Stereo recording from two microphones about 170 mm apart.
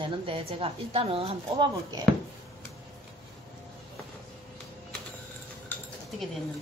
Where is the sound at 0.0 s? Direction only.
35° right (ahead or behind).